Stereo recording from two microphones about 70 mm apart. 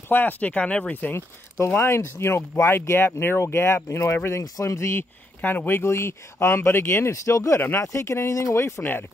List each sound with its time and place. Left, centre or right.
0.1 s speech: left
1.8 s speech: left
5.4 s speech: left